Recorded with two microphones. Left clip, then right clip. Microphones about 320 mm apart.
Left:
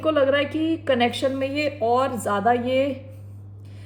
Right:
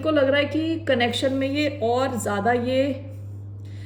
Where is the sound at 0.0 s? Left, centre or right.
Centre.